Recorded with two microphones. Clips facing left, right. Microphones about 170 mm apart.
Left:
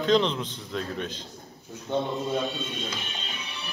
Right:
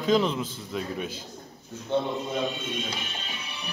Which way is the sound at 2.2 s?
20° right (ahead or behind).